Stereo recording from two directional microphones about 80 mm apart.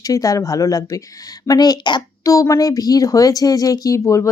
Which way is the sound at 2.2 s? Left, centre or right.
Left.